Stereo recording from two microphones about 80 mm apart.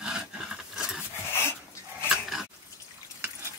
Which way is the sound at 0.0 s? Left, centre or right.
Centre.